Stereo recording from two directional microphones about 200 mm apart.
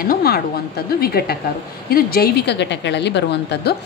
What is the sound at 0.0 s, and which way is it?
A woman's voice, 50° left (ahead or behind).